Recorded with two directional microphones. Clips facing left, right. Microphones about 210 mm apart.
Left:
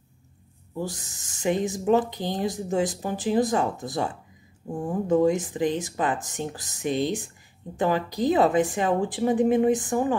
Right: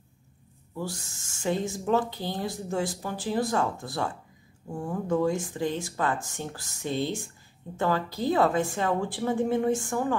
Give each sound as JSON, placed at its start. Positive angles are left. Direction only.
{"t": 0.7, "sound": "a woman's voice", "side_deg": 20}